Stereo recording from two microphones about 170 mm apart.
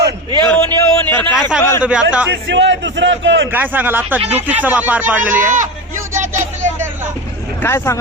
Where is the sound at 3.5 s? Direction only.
10° right (ahead or behind).